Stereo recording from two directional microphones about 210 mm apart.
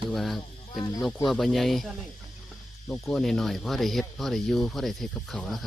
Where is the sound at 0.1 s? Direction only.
Centre (ahead or behind).